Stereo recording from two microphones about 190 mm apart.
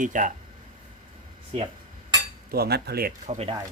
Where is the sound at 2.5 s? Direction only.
55° right (ahead or behind).